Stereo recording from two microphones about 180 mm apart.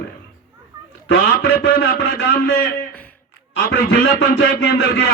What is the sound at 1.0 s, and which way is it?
A man's voice, 70° left (ahead or behind).